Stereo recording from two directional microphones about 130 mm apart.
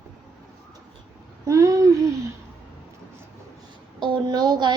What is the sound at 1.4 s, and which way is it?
Speech, 25° right (ahead or behind).